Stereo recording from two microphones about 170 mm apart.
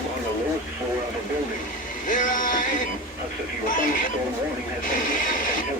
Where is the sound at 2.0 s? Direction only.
50° left (ahead or behind).